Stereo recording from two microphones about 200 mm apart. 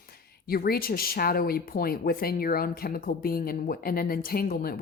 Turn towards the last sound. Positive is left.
turn(degrees=45)  # may be behind; listen again after turning